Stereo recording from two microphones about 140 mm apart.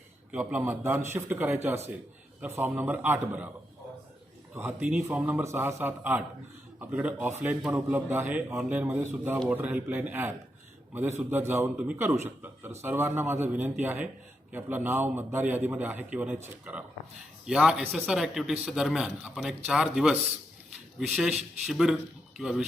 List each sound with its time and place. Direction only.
0.3 s a man's voice: 10° right (ahead or behind)
4.5 s a man's voice: 15° right (ahead or behind)
21.2 s speech: centre (ahead or behind)